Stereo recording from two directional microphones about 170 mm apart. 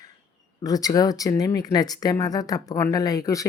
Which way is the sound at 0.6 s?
20° left (ahead or behind).